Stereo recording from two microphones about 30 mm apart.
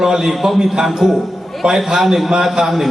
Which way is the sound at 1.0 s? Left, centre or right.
Centre.